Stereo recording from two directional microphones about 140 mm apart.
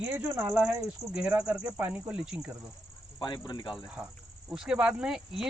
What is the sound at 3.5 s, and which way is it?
Speech, 35° left (ahead or behind).